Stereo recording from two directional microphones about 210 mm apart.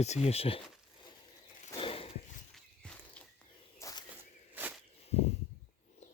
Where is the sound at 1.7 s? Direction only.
25° left (ahead or behind).